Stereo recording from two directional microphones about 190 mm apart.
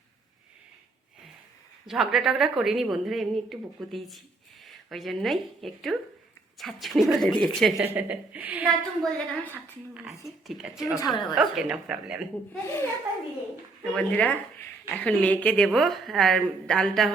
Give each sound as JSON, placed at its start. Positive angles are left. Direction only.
{"t": 1.9, "sound": "a woman's voice", "side_deg": 0}
{"t": 8.6, "sound": "a woman's voice", "side_deg": 5}
{"t": 10.9, "sound": "a woman's voice", "side_deg": 20}
{"t": 11.3, "sound": "a woman's voice", "side_deg": -5}
{"t": 12.6, "sound": "speech", "side_deg": 10}
{"t": 13.9, "sound": "a woman's voice", "side_deg": 5}